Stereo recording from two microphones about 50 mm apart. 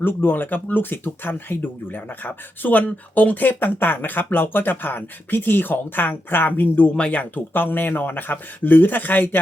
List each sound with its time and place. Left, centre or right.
0.0 s speech: left